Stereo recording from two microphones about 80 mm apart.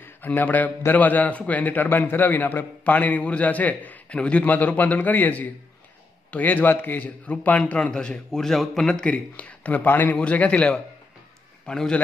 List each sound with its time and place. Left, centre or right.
0.0 s a man's voice: left